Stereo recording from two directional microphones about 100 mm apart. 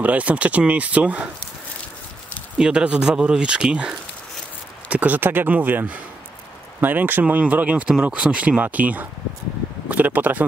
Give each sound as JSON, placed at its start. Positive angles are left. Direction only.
{"t": 0.0, "sound": "speech", "side_deg": -15}
{"t": 2.5, "sound": "speech", "side_deg": -10}